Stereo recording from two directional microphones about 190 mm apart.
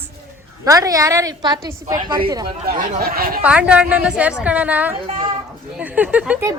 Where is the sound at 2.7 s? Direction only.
50° right (ahead or behind).